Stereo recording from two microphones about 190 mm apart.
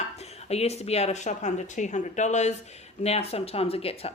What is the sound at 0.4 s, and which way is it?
Speech, 35° left (ahead or behind).